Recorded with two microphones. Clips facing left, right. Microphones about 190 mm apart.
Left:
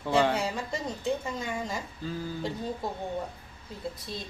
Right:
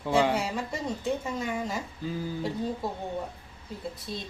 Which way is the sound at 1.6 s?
5° right (ahead or behind).